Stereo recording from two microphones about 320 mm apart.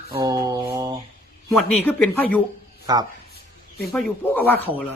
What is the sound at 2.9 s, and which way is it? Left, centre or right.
Mantra, centre.